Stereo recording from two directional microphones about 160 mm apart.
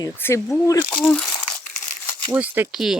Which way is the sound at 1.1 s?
5° left (ahead or behind).